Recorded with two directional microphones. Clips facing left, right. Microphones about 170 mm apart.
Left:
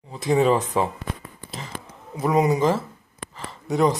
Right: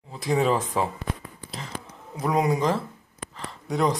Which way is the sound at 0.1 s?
Centre (ahead or behind).